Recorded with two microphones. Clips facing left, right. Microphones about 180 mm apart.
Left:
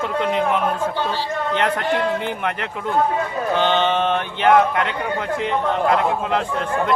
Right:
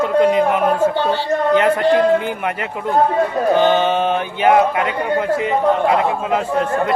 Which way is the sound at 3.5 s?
10° right (ahead or behind).